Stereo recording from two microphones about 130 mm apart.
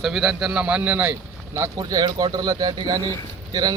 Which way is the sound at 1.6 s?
30° right (ahead or behind).